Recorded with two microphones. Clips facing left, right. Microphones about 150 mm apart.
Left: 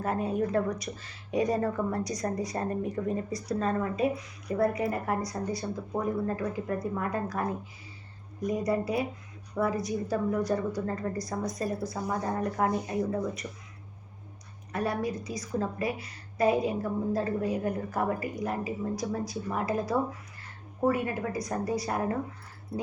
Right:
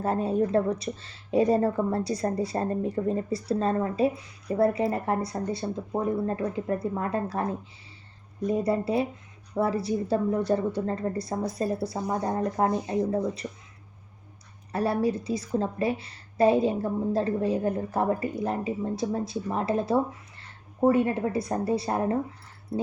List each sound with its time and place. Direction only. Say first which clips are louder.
0.0 s a woman's voice: right 4 dB; 30° right (ahead or behind)
14.7 s a woman's voice: right 5 dB; 30° right (ahead or behind)